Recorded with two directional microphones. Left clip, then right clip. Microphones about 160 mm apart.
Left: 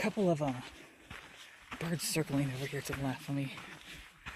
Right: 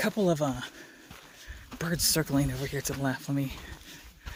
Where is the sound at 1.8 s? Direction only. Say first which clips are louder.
Right 7 dB; 40° right (ahead or behind).